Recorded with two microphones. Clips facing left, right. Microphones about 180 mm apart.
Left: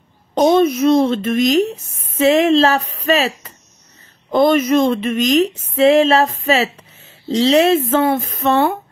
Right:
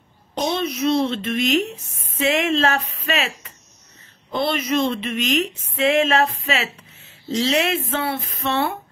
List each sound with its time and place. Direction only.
0.3 s a woman's voice: 45° left (ahead or behind)